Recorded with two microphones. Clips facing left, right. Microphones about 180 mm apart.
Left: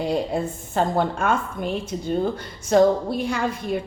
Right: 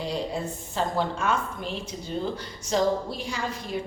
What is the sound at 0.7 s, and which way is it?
A woman's voice, 55° left (ahead or behind).